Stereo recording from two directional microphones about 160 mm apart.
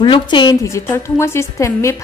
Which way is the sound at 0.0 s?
30° left (ahead or behind).